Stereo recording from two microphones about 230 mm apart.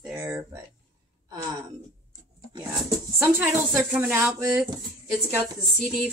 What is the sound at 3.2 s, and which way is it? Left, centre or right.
Speech, centre.